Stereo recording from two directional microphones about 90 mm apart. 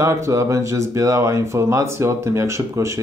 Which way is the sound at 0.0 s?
35° right (ahead or behind).